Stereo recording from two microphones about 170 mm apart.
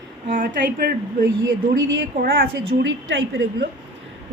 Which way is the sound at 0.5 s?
75° right (ahead or behind).